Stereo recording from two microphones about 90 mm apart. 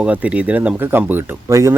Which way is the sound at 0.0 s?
15° right (ahead or behind).